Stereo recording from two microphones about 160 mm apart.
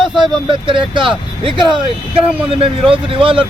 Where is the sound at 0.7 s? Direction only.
30° right (ahead or behind).